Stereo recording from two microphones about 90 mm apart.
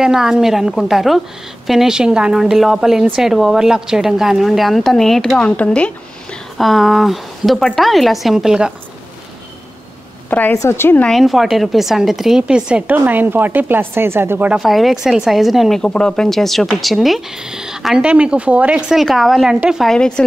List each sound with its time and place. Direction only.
0.0 s speech: 5° right (ahead or behind)
5.6 s a woman's voice: 15° left (ahead or behind)
6.6 s speech: centre (ahead or behind)
10.3 s speech: 20° left (ahead or behind)
11.1 s speech: centre (ahead or behind); by 14.5 s 25° right (ahead or behind)
14.6 s speech: centre (ahead or behind)
15.8 s a woman's voice: 10° left (ahead or behind)